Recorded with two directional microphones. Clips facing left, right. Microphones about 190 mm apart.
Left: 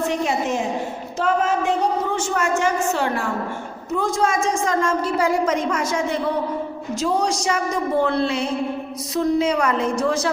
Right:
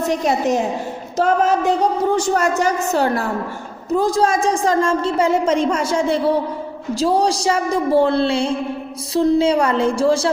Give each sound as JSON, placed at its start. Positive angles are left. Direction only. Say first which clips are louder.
{"t": 0.3, "sound": "a woman's voice", "louder": "right 4 dB", "side_deg": -40}